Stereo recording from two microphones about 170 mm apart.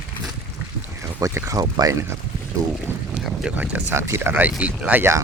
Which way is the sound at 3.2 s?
5° right (ahead or behind).